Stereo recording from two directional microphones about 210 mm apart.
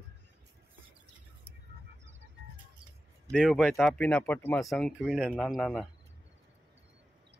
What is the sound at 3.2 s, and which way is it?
Speech, 5° left (ahead or behind).